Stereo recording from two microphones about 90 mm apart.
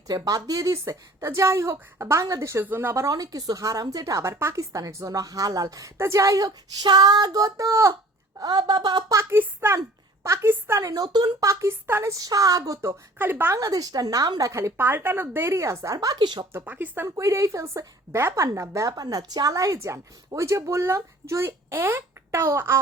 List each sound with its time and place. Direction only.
0.1 s a woman's voice: 40° right (ahead or behind)
3.1 s a woman's voice: 45° right (ahead or behind)
8.4 s speech: 50° right (ahead or behind)
9.3 s speech: 25° right (ahead or behind)
10.8 s speech: 40° right (ahead or behind)
11.4 s a woman's voice: 30° right (ahead or behind)
12.1 s a woman's voice: 40° right (ahead or behind); by 13.6 s 25° right (ahead or behind)
13.6 s speech: 40° right (ahead or behind)
14.5 s speech: 30° right (ahead or behind)
16.1 s speech: 55° right (ahead or behind)
16.5 s speech: 25° right (ahead or behind)
17.2 s a woman's voice: 35° right (ahead or behind)